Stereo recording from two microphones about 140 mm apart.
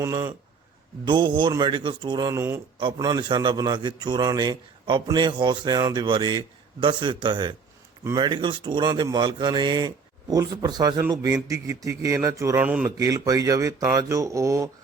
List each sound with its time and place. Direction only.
0.0 s a man's voice: 25° right (ahead or behind)
2.7 s a man's voice: 35° right (ahead or behind); by 12.9 s 10° right (ahead or behind)
13.0 s a man's voice: 25° right (ahead or behind)